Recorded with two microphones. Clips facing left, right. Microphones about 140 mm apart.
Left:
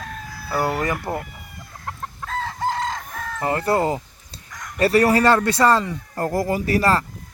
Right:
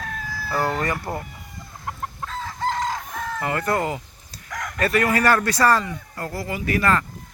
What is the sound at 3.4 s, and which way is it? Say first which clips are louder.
A man's voice: left 4 dB; 30° left (ahead or behind).